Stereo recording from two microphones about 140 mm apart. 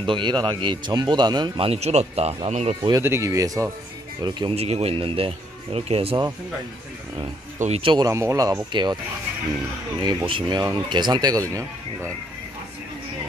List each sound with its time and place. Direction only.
0.0 s speech: 35° right (ahead or behind)
1.7 s speech: 50° right (ahead or behind)
2.9 s speech: 20° right (ahead or behind)
4.6 s speech: 50° right (ahead or behind)
7.8 s speech: 35° right (ahead or behind)
8.1 s speech: 20° right (ahead or behind)
10.0 s speech: 35° right (ahead or behind)